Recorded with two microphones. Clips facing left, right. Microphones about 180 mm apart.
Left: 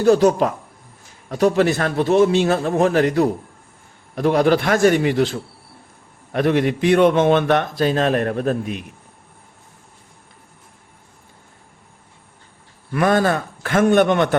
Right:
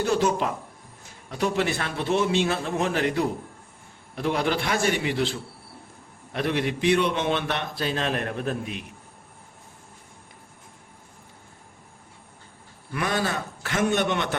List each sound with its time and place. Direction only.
0.0 s a man's voice: 40° left (ahead or behind)
12.9 s a man's voice: 50° left (ahead or behind)